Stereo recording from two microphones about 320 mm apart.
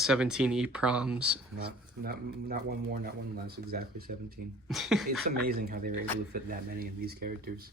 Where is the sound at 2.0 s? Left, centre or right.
Right.